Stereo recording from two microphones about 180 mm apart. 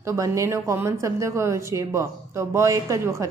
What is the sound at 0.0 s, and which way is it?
A woman's voice, 15° right (ahead or behind).